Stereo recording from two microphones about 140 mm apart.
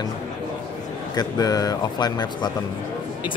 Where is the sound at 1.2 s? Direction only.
25° left (ahead or behind).